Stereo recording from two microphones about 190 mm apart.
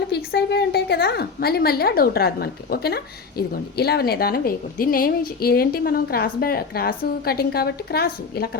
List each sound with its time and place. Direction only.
0.1 s a woman's voice: 55° left (ahead or behind)